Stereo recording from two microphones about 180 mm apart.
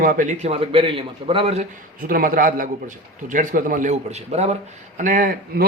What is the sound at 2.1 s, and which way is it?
A man's voice, 55° right (ahead or behind).